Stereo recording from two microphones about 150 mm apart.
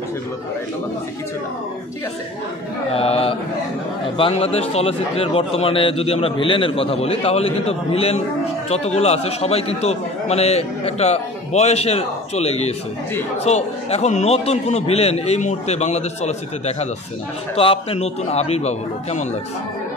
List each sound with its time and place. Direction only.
2.9 s a man's voice: 40° left (ahead or behind)